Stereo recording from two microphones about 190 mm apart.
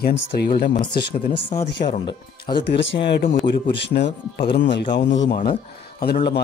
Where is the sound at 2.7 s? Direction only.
70° left (ahead or behind).